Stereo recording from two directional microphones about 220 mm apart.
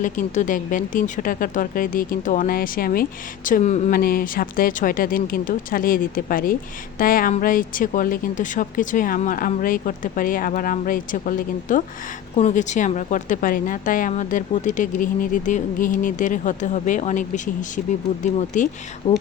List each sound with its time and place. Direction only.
0.0 s speech: 35° left (ahead or behind)